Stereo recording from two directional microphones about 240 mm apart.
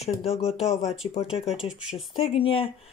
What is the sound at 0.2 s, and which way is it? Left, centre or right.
Speech, left.